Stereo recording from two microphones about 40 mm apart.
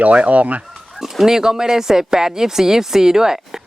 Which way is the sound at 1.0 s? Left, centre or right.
Centre.